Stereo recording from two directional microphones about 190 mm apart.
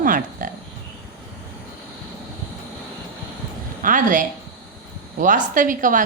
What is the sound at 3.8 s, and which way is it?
A woman's voice, 45° right (ahead or behind).